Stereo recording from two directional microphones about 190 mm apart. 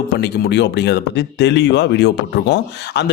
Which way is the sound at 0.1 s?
60° left (ahead or behind).